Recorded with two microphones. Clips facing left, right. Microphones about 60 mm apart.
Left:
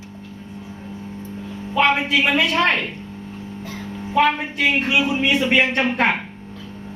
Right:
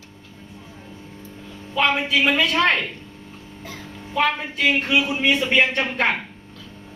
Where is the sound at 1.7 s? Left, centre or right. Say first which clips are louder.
Left 3 dB; centre.